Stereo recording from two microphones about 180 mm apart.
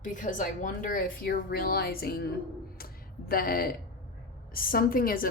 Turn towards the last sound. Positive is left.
turn(degrees=55)  # may be behind; listen again after turning